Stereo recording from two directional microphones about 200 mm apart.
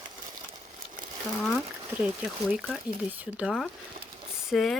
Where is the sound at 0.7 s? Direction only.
45° right (ahead or behind).